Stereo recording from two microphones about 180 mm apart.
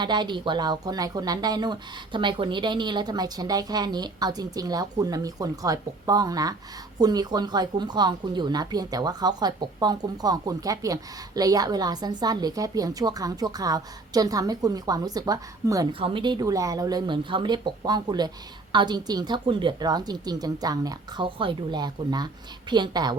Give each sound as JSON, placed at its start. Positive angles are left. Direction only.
{"t": 0.0, "sound": "speech", "side_deg": -25}